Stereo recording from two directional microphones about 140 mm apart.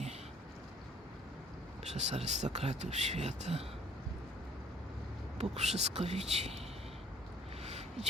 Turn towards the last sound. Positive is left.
turn(degrees=-50)  # may be behind; listen again after turning